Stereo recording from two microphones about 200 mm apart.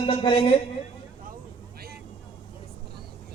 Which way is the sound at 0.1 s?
25° left (ahead or behind).